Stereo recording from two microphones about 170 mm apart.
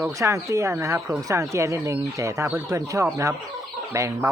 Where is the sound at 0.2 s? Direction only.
20° right (ahead or behind).